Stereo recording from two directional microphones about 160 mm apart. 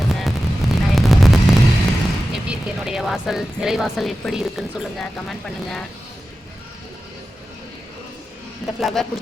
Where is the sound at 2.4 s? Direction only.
5° right (ahead or behind).